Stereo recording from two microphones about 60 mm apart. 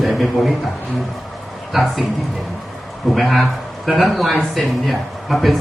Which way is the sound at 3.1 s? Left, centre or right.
Centre.